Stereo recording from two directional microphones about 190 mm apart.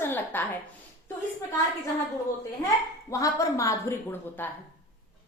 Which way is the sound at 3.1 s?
15° left (ahead or behind).